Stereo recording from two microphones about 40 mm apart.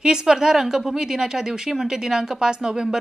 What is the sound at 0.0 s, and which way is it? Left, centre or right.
A woman's voice, centre.